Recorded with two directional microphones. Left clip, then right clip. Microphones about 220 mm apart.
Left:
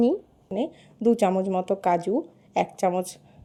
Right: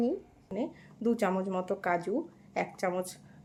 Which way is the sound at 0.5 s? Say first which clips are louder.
Left 7 dB; 30° left (ahead or behind).